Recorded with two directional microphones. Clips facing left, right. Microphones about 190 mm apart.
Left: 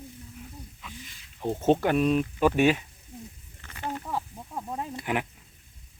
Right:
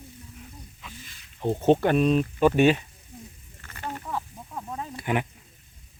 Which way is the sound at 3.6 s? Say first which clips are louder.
Left 1 dB; 10° left (ahead or behind).